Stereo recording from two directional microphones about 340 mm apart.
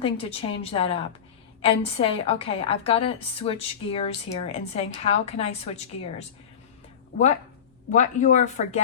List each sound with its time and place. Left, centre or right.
0.0 s a woman's voice: centre
7.9 s speech: left